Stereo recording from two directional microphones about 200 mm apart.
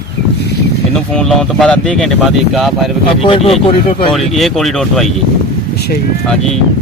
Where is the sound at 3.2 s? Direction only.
25° left (ahead or behind).